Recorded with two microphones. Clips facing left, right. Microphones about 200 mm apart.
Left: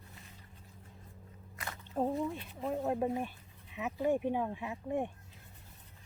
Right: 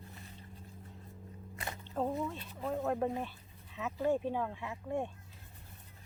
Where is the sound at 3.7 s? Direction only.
15° left (ahead or behind).